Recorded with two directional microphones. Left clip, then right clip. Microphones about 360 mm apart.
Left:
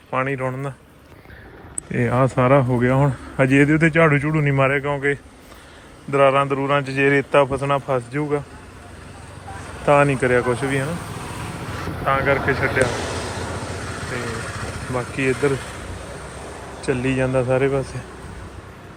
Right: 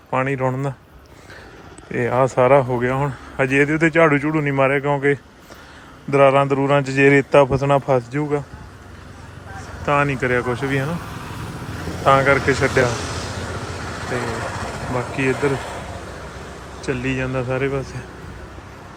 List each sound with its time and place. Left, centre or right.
0.1 s speech: centre
1.9 s speech: centre
9.8 s speech: centre
12.0 s speech: centre
12.9 s vehicle: centre
14.3 s vehicle: right
14.9 s speech: centre
16.8 s speech: centre